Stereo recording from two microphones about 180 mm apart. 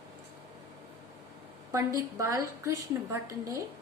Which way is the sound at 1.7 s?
15° right (ahead or behind).